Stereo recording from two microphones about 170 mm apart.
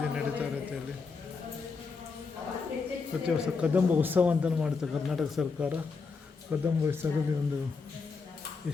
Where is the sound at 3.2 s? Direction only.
5° right (ahead or behind).